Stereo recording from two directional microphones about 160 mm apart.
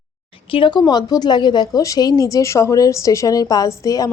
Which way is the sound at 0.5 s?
30° left (ahead or behind).